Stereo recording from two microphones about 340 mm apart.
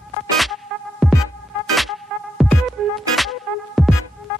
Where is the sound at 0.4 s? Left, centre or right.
Centre.